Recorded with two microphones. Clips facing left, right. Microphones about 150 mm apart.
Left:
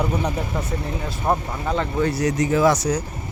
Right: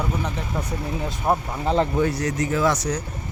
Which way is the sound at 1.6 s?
25° right (ahead or behind).